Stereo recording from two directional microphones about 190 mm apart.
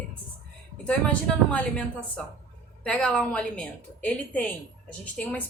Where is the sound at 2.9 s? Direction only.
5° left (ahead or behind).